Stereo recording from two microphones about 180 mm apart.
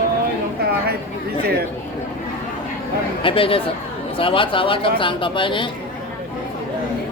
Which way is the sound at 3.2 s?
30° left (ahead or behind).